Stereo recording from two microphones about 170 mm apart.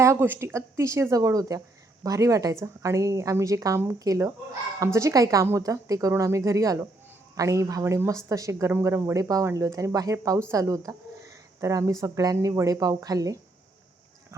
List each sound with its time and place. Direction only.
0.0 s a woman's voice: 15° right (ahead or behind)